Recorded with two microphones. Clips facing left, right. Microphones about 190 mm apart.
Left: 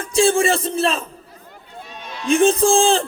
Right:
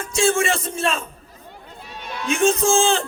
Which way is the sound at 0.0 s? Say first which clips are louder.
Left 4 dB; 35° left (ahead or behind).